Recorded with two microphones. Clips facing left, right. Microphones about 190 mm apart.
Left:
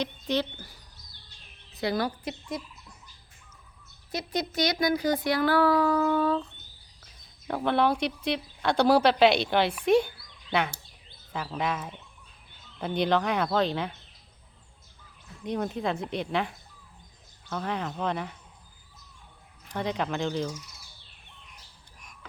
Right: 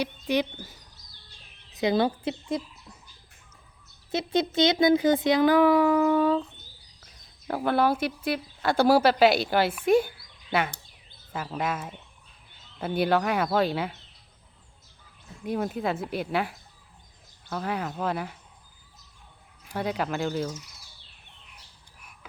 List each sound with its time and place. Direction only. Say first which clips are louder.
0.0 s speech: right 2 dB; 10° right (ahead or behind)
4.1 s speech: right 5 dB; 25° right (ahead or behind); by 10.1 s 5° right (ahead or behind)
11.3 s speech: even; centre (ahead or behind)
15.4 s speech: right 1 dB; 5° right (ahead or behind)
19.6 s speech: right 1 dB; 5° right (ahead or behind)